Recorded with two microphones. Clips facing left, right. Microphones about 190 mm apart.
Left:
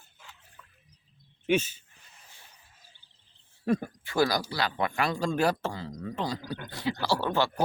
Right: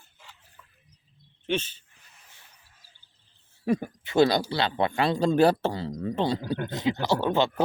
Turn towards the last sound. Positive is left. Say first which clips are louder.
# right 3 dB
turn(degrees=-20)  # may be behind; listen again after turning